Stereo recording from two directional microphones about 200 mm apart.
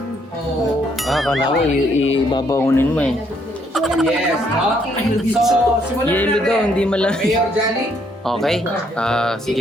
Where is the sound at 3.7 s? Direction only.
Centre (ahead or behind).